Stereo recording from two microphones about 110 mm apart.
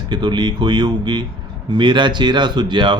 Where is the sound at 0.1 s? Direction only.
45° right (ahead or behind).